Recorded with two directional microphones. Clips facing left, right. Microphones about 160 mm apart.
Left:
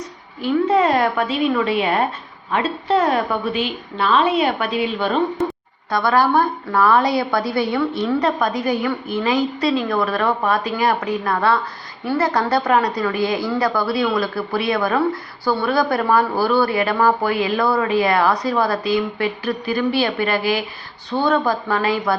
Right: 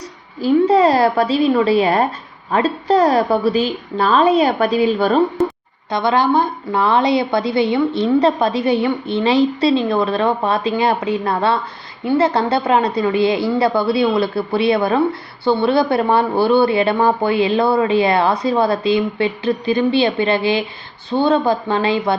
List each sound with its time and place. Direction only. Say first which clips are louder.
0.4 s a woman's voice: right 4 dB; 35° right (ahead or behind)
5.9 s a woman's voice: right 1 dB; 20° right (ahead or behind)